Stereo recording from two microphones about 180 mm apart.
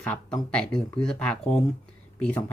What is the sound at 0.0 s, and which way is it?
Speech, 5° left (ahead or behind).